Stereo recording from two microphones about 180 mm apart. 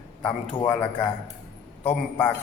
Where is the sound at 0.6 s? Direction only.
10° left (ahead or behind).